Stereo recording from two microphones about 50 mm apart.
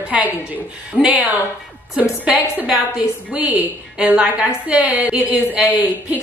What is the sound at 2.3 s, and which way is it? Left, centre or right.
A woman's voice, right.